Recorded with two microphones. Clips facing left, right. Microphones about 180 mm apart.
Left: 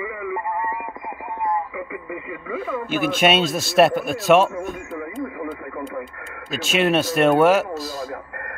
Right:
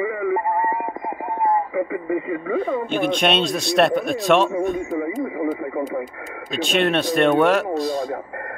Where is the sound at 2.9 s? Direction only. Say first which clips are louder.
Left 4 dB; 5° left (ahead or behind).